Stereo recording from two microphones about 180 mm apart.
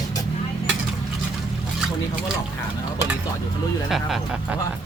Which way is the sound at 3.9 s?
Centre (ahead or behind).